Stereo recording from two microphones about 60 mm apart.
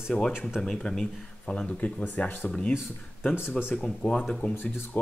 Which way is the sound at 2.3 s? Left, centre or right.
Left.